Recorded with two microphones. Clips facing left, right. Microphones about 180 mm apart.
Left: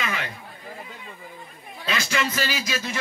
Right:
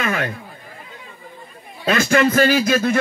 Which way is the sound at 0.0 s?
50° right (ahead or behind).